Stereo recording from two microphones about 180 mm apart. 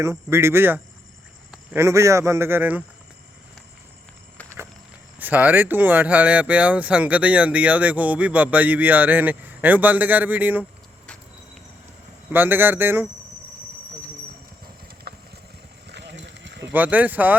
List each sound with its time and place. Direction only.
0.0 s speech: 15° right (ahead or behind)
5.2 s speech: 10° right (ahead or behind)
10.6 s a sound: 5° left (ahead or behind)
12.3 s speech: 10° right (ahead or behind)
15.1 s vehicle: 60° right (ahead or behind)
15.9 s a sound: 75° right (ahead or behind)
16.7 s speech: 10° right (ahead or behind)